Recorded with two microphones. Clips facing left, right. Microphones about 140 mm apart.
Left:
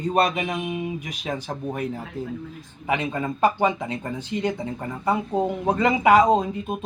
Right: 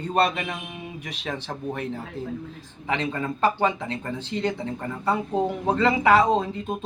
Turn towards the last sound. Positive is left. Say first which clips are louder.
# left 1 dB
turn(degrees=10)  # may be behind; listen again after turning